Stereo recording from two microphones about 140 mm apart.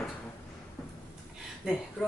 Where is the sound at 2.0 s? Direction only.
5° left (ahead or behind).